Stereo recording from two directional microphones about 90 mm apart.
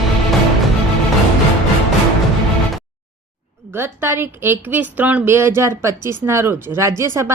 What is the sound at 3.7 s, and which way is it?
A woman's voice, 25° right (ahead or behind).